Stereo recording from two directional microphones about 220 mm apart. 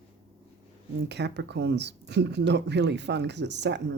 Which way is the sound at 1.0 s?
50° right (ahead or behind).